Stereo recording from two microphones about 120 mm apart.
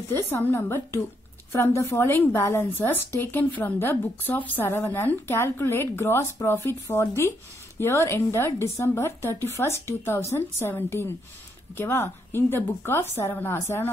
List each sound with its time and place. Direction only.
0.1 s speech: 20° left (ahead or behind)